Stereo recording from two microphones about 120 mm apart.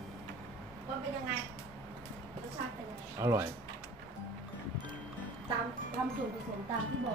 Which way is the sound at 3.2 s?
25° right (ahead or behind).